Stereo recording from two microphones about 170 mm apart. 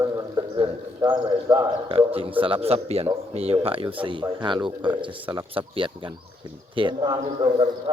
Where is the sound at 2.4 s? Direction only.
35° right (ahead or behind).